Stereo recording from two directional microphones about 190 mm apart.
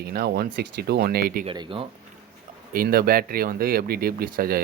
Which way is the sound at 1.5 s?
25° right (ahead or behind).